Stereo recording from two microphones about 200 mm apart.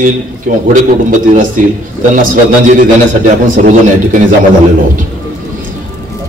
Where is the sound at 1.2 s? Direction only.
40° right (ahead or behind).